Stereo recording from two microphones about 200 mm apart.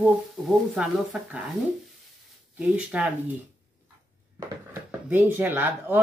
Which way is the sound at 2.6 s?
5° right (ahead or behind).